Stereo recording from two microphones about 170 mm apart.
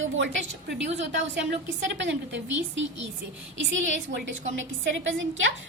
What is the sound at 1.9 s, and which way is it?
A woman's voice, 90° right.